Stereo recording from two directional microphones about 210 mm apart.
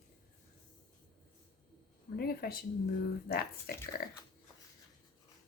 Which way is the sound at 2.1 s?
45° left (ahead or behind).